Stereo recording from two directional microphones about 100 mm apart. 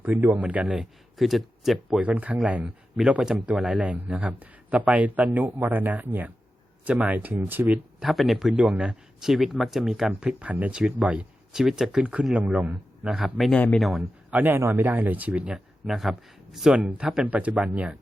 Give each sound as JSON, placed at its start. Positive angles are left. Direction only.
{"t": 0.0, "sound": "speech", "side_deg": -20}
{"t": 2.0, "sound": "speech", "side_deg": -15}
{"t": 7.9, "sound": "speech", "side_deg": 0}
{"t": 13.5, "sound": "speech", "side_deg": 15}
{"t": 13.7, "sound": "speech", "side_deg": 0}
{"t": 14.3, "sound": "speech", "side_deg": -15}
{"t": 15.9, "sound": "speech", "side_deg": 0}